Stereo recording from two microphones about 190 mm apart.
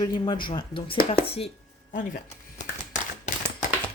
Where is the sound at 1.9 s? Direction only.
45° left (ahead or behind).